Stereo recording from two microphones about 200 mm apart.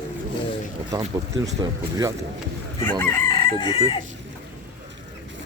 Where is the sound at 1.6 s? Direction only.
20° right (ahead or behind).